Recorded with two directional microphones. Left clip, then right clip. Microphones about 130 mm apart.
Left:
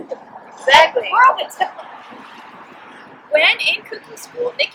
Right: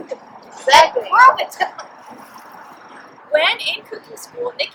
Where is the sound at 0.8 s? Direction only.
5° right (ahead or behind).